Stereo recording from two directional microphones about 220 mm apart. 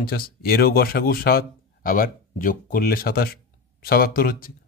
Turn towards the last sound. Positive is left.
turn(degrees=40)  # may be behind; listen again after turning